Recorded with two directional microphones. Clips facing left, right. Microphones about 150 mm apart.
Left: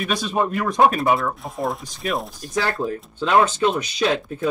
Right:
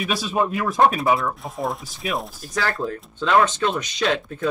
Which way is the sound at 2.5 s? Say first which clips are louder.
Left 2 dB; 25° left (ahead or behind).